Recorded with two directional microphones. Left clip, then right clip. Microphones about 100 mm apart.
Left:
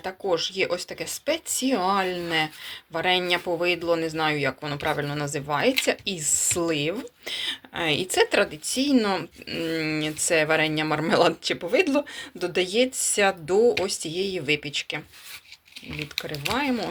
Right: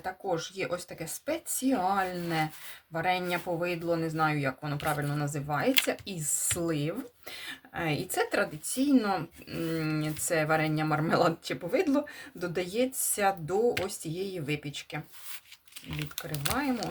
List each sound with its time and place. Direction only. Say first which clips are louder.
0.3 s a woman's voice: left 9 dB; 30° left (ahead or behind); by 10.0 s 10° left (ahead or behind)
10.2 s a woman's voice: left 6 dB; 25° left (ahead or behind)